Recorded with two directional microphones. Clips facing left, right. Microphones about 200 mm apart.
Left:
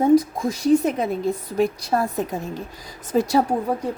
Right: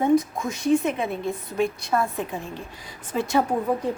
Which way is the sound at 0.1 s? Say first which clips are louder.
Left 4 dB; 35° left (ahead or behind).